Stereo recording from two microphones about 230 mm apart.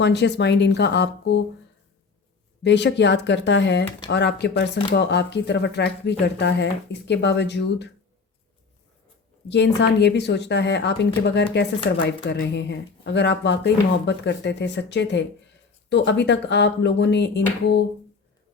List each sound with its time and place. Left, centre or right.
0.0 s speech: left
2.6 s speech: left
9.5 s speech: left